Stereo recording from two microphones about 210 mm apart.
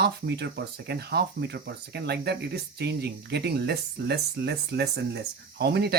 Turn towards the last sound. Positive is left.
turn(degrees=-50)  # may be behind; listen again after turning